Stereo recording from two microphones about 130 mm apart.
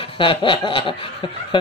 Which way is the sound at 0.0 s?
40° left (ahead or behind).